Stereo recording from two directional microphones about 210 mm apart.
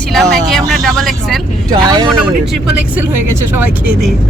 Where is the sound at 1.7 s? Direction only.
20° right (ahead or behind).